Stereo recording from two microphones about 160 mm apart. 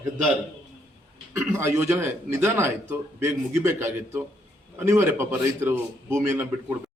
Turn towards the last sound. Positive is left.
turn(degrees=-15)  # may be behind; listen again after turning